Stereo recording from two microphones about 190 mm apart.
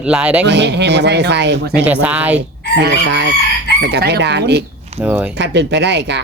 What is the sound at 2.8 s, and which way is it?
Chicken, 70° right (ahead or behind).